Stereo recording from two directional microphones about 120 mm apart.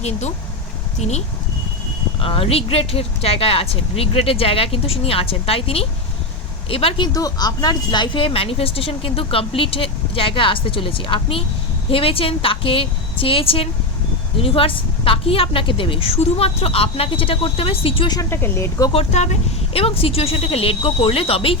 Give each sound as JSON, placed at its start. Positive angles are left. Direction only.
{"t": 0.0, "sound": "speech", "side_deg": 65}
{"t": 2.2, "sound": "speech", "side_deg": 50}
{"t": 7.1, "sound": "speech", "side_deg": 30}
{"t": 18.1, "sound": "speech", "side_deg": 25}
{"t": 18.9, "sound": "speech", "side_deg": 70}
{"t": 19.7, "sound": "speech", "side_deg": 55}